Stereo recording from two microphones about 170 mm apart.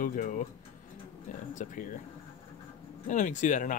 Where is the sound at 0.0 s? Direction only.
50° left (ahead or behind).